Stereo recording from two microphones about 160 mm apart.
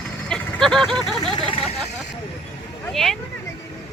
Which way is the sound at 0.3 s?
5° left (ahead or behind).